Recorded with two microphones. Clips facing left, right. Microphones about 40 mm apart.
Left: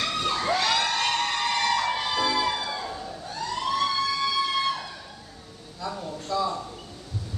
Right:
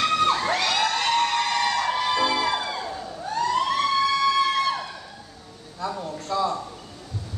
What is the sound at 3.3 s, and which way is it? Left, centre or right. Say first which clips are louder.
Emergency vehicle: right 6 dB; right.